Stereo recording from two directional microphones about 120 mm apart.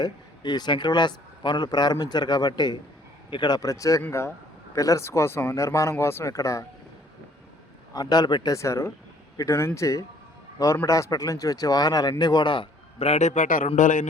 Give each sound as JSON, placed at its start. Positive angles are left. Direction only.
{"t": 0.0, "sound": "speech", "side_deg": 35}
{"t": 7.9, "sound": "a man's voice", "side_deg": 35}
{"t": 13.1, "sound": "a man's voice", "side_deg": 70}